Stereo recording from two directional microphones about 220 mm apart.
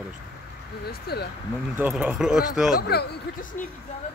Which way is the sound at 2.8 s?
45° left (ahead or behind).